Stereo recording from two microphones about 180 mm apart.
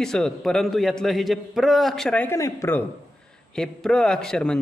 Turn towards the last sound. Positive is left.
turn(degrees=5)  # may be behind; listen again after turning